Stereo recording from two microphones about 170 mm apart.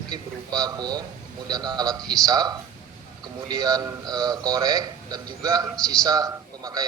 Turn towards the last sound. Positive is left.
turn(degrees=-20)  # may be behind; listen again after turning